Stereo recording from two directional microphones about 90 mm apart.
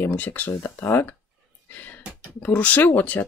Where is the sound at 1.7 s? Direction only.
15° left (ahead or behind).